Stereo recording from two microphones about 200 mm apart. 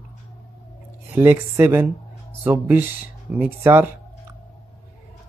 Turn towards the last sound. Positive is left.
turn(degrees=-10)  # may be behind; listen again after turning